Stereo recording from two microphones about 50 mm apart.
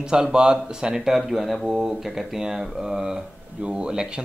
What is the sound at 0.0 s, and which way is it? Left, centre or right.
Speech, centre.